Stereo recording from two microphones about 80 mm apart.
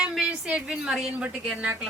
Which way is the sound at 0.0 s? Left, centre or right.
Centre.